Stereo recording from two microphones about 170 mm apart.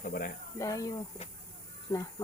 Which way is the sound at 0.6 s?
20° left (ahead or behind).